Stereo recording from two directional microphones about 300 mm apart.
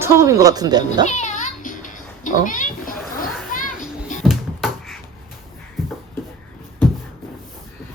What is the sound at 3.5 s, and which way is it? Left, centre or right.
Children playing, left.